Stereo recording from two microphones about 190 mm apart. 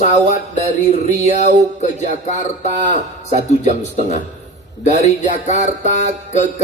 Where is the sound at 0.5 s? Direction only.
40° left (ahead or behind).